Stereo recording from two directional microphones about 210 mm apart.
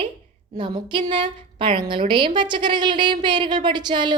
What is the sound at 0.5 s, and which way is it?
A woman's voice, 20° right (ahead or behind).